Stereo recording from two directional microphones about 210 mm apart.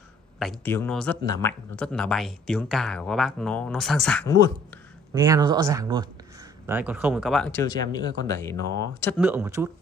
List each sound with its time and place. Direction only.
0.7 s speech: 10° left (ahead or behind)
1.2 s speech: 15° left (ahead or behind)
1.8 s speech: 5° left (ahead or behind)
5.1 s speech: 20° right (ahead or behind); by 7.6 s 5° left (ahead or behind)
7.6 s speech: 20° left (ahead or behind)
9.2 s speech: 10° right (ahead or behind)